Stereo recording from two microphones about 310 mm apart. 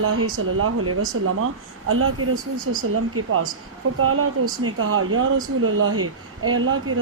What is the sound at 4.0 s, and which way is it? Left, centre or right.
Speech, right.